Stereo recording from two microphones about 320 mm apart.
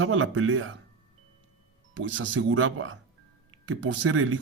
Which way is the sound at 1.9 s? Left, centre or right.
Right.